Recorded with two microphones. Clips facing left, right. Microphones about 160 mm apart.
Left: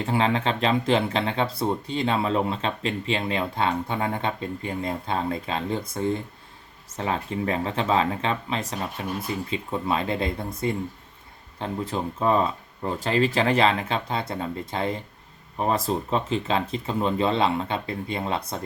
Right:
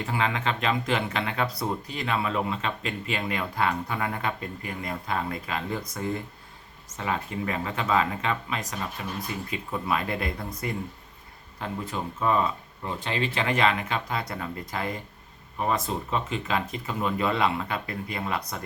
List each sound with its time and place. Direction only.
0.0 s speech: 30° left (ahead or behind)